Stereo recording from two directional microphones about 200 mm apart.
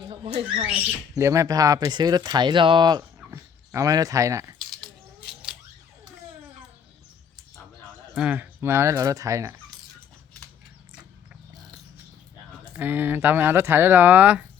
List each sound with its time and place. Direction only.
0.1 s speech: 25° right (ahead or behind)
0.9 s speech: 15° right (ahead or behind)
4.8 s scissors: 5° right (ahead or behind)
8.1 s speech: 5° right (ahead or behind)
12.7 s speech: 10° right (ahead or behind)